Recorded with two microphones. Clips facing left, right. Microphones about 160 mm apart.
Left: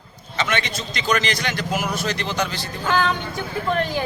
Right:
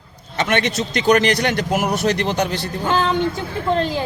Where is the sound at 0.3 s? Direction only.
60° right (ahead or behind).